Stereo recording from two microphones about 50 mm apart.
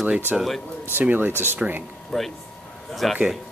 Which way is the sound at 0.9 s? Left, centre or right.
Right.